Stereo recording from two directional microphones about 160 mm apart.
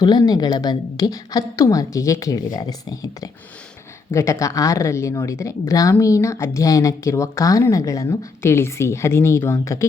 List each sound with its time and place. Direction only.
0.0 s speech: 25° left (ahead or behind)